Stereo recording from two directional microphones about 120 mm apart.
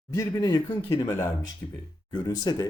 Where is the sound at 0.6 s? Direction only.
20° left (ahead or behind).